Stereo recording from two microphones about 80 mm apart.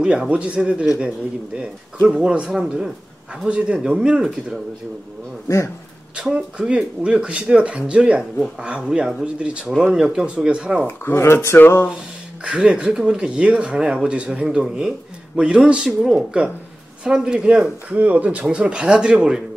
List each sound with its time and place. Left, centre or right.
0.0 s speech: centre
6.3 s speech: centre
10.9 s speech: left
12.4 s speech: centre